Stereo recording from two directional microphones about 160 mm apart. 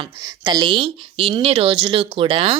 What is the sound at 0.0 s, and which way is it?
Speech, 25° right (ahead or behind).